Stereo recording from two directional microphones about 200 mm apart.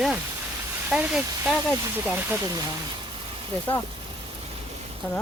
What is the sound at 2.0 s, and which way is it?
Speech, 15° right (ahead or behind).